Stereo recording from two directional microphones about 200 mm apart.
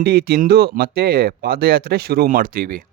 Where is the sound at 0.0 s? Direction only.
50° right (ahead or behind).